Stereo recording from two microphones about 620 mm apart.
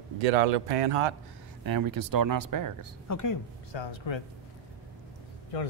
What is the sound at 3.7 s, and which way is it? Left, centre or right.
Speech, left.